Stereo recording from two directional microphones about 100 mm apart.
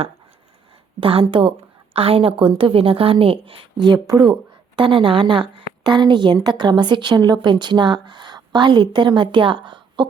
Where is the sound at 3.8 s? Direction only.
40° right (ahead or behind).